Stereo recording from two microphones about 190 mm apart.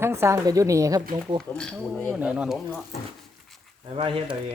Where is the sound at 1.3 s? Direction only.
5° left (ahead or behind).